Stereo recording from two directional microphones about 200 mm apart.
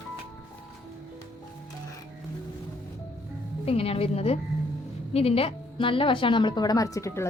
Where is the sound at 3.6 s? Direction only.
30° left (ahead or behind).